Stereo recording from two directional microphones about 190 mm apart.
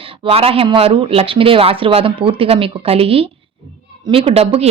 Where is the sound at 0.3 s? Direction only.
30° right (ahead or behind).